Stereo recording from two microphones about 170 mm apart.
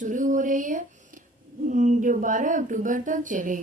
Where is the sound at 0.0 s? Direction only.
50° right (ahead or behind).